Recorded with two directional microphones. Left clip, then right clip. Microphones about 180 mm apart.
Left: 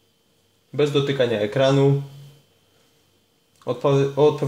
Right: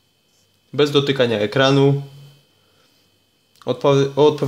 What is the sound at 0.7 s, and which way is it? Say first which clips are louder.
Speech: right 4 dB; 35° right (ahead or behind).